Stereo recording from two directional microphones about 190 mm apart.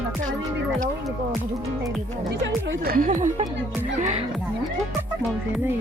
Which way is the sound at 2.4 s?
60° right (ahead or behind).